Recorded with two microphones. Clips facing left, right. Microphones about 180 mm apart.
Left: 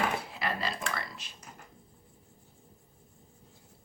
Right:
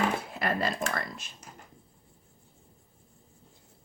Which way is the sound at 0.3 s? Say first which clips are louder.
Right 5 dB; 50° right (ahead or behind).